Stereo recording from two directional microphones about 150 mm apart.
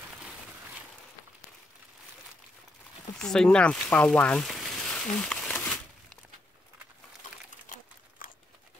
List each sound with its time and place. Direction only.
3.2 s speech: 5° left (ahead or behind)
7.2 s pigeon: 60° left (ahead or behind)